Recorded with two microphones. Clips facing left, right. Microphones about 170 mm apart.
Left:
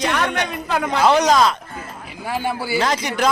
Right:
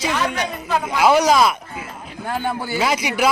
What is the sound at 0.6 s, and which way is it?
Speech, 65° left (ahead or behind).